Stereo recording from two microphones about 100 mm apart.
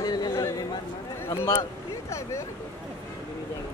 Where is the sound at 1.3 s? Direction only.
25° left (ahead or behind).